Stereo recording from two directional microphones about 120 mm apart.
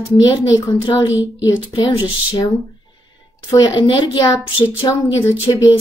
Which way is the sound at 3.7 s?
45° left (ahead or behind).